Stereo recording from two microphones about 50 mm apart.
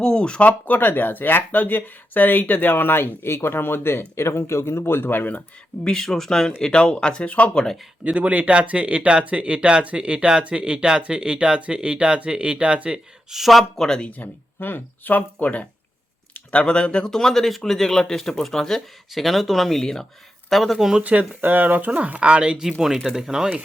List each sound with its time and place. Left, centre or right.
0.0 s speech: centre; by 5.4 s left
5.8 s speech: centre; by 7.5 s left
7.5 s speech: centre
8.0 s speech: right
13.3 s speech: centre
13.8 s speech: centre
14.1 s speech: left
17.1 s speech: centre
21.0 s speech: right
21.4 s speech: right
23.0 s speech: centre